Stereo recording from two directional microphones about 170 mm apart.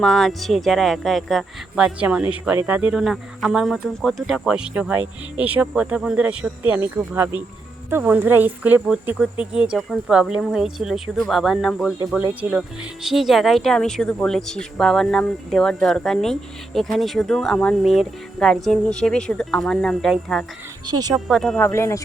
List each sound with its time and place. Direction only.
0.0 s speech: centre (ahead or behind)
20.8 s speech: 25° right (ahead or behind)
21.2 s speech: centre (ahead or behind)